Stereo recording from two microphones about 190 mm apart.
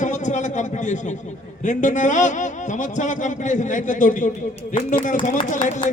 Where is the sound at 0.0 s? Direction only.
40° left (ahead or behind).